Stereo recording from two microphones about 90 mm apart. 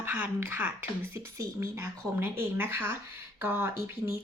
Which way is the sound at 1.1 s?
35° right (ahead or behind).